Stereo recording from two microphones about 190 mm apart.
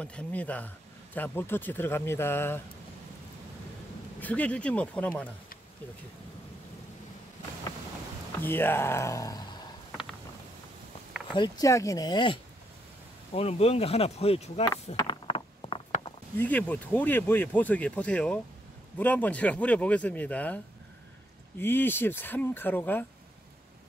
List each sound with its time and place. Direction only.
0.0 s speech: 5° left (ahead or behind)
4.2 s speech: 10° left (ahead or behind)
8.4 s speech: 10° left (ahead or behind)
11.3 s speech: 20° left (ahead or behind)
15.0 s a sound: 25° left (ahead or behind)
16.3 s speech: 10° left (ahead or behind)